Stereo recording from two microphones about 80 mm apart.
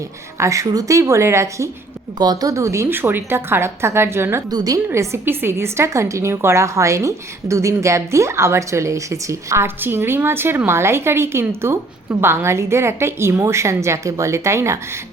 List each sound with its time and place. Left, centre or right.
0.3 s a woman's voice: right
2.1 s a woman's voice: right
2.5 s a woman's voice: right
4.5 s a woman's voice: right
4.9 s a woman's voice: right